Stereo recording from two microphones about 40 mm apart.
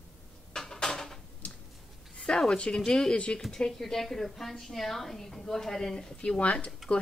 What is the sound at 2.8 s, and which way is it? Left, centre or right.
A woman's voice, centre.